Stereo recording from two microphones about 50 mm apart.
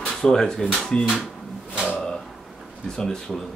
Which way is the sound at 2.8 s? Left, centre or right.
Centre.